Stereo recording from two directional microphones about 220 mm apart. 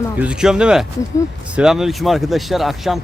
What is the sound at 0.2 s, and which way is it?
Speech, 5° right (ahead or behind).